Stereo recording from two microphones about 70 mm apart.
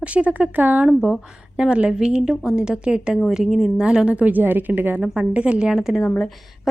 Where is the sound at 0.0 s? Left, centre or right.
Centre.